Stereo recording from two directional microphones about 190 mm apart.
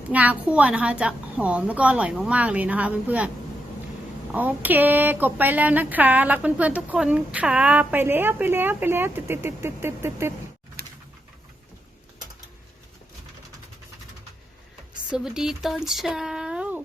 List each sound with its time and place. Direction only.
0.1 s speech: 10° right (ahead or behind)
4.3 s speech: 10° right (ahead or behind)
10.8 s pigeon: 55° right (ahead or behind)
15.1 s speech: 5° right (ahead or behind)